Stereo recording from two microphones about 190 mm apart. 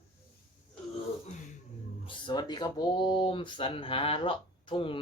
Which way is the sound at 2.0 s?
25° left (ahead or behind).